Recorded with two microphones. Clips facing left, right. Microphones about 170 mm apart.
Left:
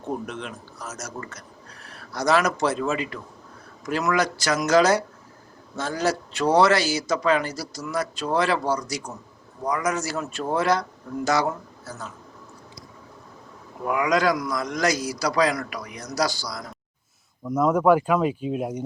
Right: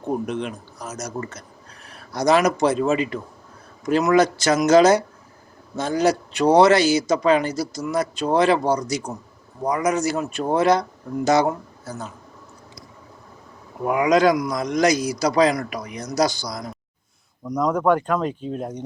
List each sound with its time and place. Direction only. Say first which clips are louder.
0.0 s a man's voice: right 6 dB; 15° right (ahead or behind)
13.8 s a man's voice: right 5 dB; 25° right (ahead or behind)
17.4 s speech: left 1 dB; 5° left (ahead or behind)